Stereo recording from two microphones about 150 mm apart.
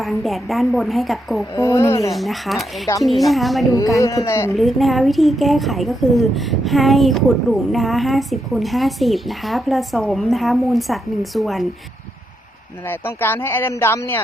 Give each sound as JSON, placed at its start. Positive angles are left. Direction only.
{"t": 0.0, "sound": "a woman's voice", "side_deg": 0}
{"t": 1.5, "sound": "speech", "side_deg": 20}
{"t": 2.1, "sound": "a woman's voice", "side_deg": 0}
{"t": 3.9, "sound": "speech", "side_deg": 20}
{"t": 4.5, "sound": "a woman's voice", "side_deg": 0}
{"t": 12.9, "sound": "a man's voice", "side_deg": 15}